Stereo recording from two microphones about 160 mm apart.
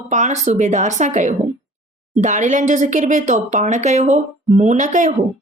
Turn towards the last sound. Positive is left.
turn(degrees=-50)  # may be behind; listen again after turning